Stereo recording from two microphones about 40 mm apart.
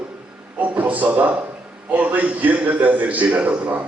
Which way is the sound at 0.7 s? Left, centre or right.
Right.